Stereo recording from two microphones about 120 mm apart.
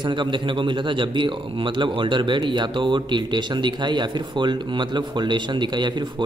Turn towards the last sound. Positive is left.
turn(degrees=-40)  # may be behind; listen again after turning